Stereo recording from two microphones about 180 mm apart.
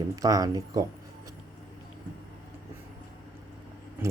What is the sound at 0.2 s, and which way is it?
Speech, 20° right (ahead or behind).